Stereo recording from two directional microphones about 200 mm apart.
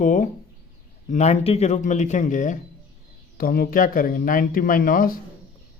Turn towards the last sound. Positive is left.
turn(degrees=45)  # may be behind; listen again after turning